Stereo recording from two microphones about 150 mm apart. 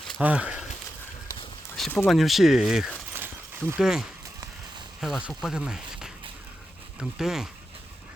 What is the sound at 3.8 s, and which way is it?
Speech, 5° right (ahead or behind).